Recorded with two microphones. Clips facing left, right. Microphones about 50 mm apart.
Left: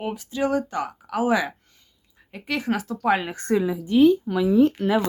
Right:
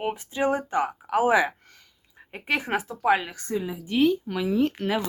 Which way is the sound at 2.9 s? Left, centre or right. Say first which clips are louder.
Even; centre.